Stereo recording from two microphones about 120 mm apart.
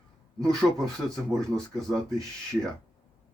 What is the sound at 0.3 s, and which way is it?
Speech, 5° left (ahead or behind).